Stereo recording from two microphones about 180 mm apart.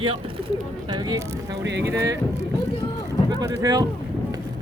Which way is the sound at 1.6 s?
75° right (ahead or behind).